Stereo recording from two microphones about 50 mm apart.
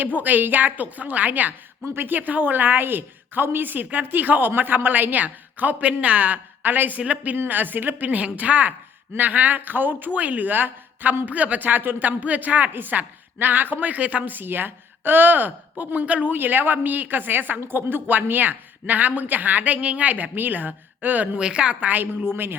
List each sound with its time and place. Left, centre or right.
0.0 s a woman's voice: right
1.9 s a woman's voice: right
11.3 s a woman's voice: right
16.3 s a woman's voice: right
21.3 s a woman's voice: centre; by 22.5 s right